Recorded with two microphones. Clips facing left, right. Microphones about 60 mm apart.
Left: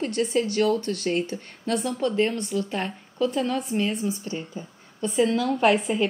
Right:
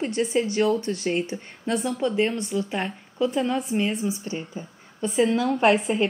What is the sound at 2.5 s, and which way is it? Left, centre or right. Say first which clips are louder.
A woman's voice: right 1 dB; centre.